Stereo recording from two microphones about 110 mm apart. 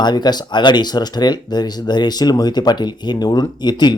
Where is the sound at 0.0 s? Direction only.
40° left (ahead or behind).